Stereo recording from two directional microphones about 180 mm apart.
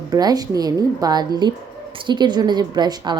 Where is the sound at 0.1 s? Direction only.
20° right (ahead or behind).